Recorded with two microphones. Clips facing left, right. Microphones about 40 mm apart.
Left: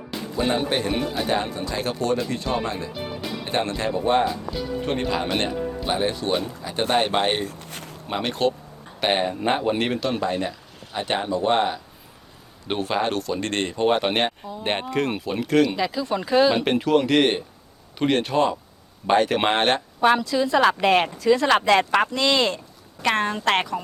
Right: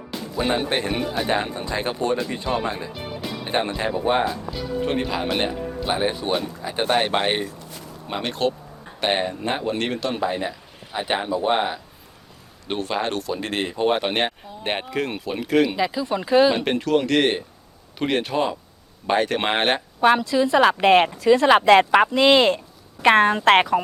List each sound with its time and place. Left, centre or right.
0.4 s speech: centre
7.6 s a sound: left
8.0 s speech: centre; by 23.6 s right